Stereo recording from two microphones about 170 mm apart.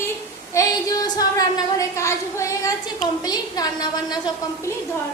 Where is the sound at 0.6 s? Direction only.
20° left (ahead or behind).